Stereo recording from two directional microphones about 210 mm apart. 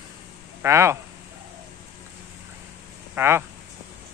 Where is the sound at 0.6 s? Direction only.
15° right (ahead or behind).